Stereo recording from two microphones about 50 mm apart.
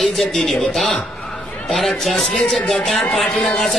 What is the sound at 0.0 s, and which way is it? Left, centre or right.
Speech, centre.